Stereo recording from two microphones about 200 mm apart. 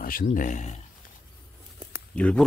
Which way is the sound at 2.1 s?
5° left (ahead or behind).